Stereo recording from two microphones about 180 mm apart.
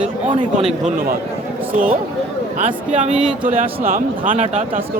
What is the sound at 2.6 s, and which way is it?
Speech, 45° right (ahead or behind).